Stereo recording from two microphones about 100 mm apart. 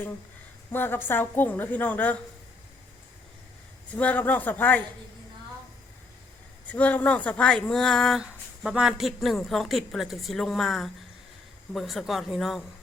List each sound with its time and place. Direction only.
0.7 s a woman's voice: 20° left (ahead or behind)
3.9 s speech: 15° left (ahead or behind)
6.7 s speech: 15° left (ahead or behind); by 12.6 s centre (ahead or behind)